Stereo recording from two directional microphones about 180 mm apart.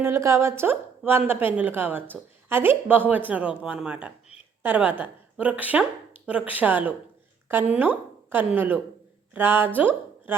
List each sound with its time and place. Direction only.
0.0 s a woman's voice: 15° right (ahead or behind)